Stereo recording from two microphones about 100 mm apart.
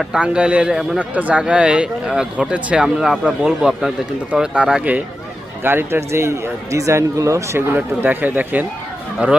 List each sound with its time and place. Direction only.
0.0 s speech: 10° right (ahead or behind)
5.6 s a man's voice: 25° right (ahead or behind)
7.8 s speech: 20° right (ahead or behind)